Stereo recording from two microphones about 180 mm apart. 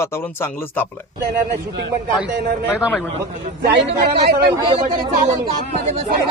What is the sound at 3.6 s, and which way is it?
Speech, 65° right (ahead or behind).